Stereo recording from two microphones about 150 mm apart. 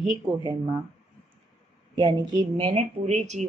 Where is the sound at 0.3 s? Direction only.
25° right (ahead or behind).